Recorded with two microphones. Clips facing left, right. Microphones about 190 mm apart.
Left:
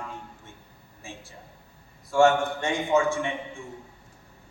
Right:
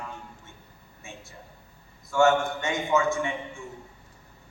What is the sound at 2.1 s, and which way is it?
A man's voice, 30° left (ahead or behind).